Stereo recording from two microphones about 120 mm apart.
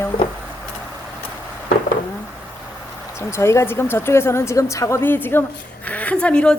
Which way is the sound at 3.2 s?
20° left (ahead or behind).